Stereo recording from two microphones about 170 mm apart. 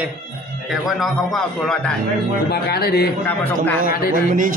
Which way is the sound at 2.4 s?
70° left (ahead or behind).